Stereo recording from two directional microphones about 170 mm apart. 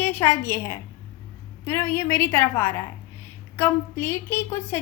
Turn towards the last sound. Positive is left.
turn(degrees=15)  # may be behind; listen again after turning